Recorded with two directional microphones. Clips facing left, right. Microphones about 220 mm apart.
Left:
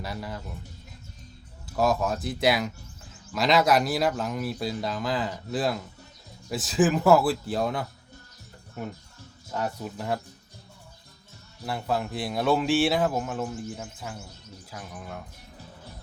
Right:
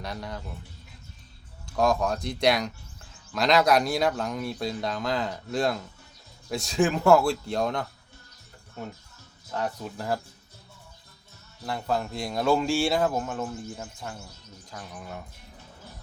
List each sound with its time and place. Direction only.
0.0 s speech: 5° left (ahead or behind)
1.7 s speech: 5° left (ahead or behind)
9.5 s speech: 10° left (ahead or behind)
11.6 s speech: 5° left (ahead or behind)